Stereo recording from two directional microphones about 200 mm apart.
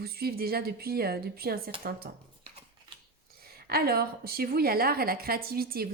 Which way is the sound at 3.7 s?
50° right (ahead or behind).